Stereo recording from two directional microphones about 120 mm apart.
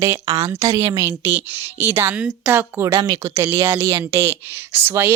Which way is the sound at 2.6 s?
25° right (ahead or behind).